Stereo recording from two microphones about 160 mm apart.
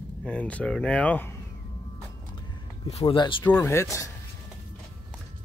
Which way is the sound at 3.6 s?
20° left (ahead or behind).